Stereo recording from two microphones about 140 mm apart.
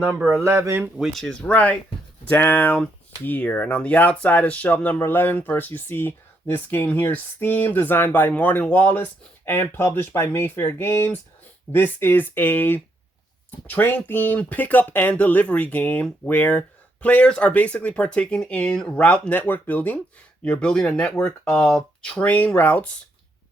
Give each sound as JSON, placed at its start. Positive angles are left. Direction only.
{"t": 0.0, "sound": "speech", "side_deg": -15}
{"t": 0.9, "sound": "speech", "side_deg": 0}